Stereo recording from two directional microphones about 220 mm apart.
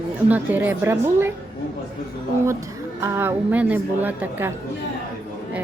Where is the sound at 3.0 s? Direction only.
10° right (ahead or behind).